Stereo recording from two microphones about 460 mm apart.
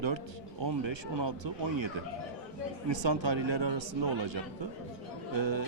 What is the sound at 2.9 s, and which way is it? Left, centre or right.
Speech, right.